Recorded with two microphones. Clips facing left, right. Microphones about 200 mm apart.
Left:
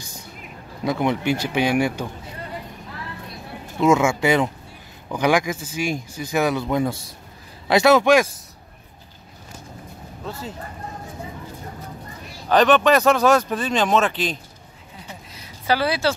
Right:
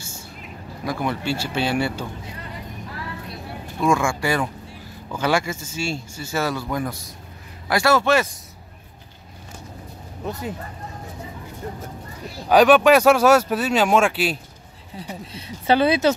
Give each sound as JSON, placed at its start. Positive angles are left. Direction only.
{"t": 0.8, "sound": "speech", "side_deg": 20}
{"t": 3.8, "sound": "speech", "side_deg": 20}
{"t": 12.4, "sound": "speech", "side_deg": -10}
{"t": 15.3, "sound": "speech", "side_deg": -25}